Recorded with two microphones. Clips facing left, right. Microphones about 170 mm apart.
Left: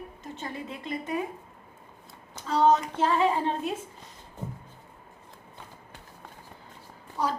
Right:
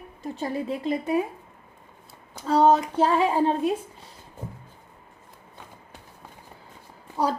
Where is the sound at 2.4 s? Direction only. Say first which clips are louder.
Right 4 dB; 30° right (ahead or behind).